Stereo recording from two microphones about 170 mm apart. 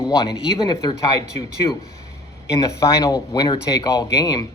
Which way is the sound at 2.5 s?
20° left (ahead or behind).